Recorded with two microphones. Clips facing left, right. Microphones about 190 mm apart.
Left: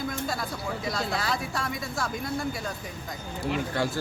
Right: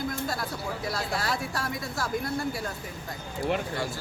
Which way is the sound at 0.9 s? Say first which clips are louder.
Left 1 dB; 5° right (ahead or behind).